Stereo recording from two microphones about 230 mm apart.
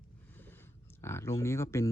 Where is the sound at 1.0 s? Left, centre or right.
Centre.